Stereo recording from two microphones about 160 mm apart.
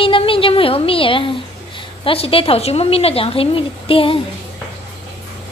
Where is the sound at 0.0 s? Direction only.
35° left (ahead or behind).